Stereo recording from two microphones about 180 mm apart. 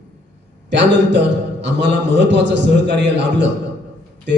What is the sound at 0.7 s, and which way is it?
A man's voice, 75° right (ahead or behind).